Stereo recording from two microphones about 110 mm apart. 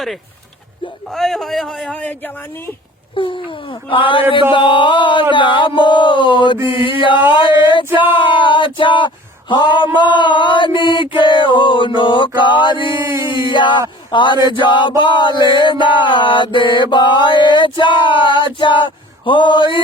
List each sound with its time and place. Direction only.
1.1 s a man's voice: 5° left (ahead or behind)
3.2 s chant: 50° left (ahead or behind)
13.1 s a sound: 25° right (ahead or behind)
13.5 s chant: 45° left (ahead or behind)